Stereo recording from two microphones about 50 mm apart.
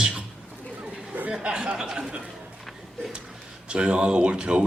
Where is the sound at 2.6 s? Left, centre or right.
Centre.